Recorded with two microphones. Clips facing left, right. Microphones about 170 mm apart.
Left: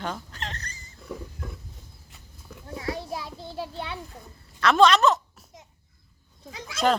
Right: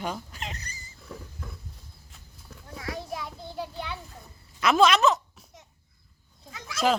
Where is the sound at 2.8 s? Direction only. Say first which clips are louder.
Left 3 dB; 25° left (ahead or behind).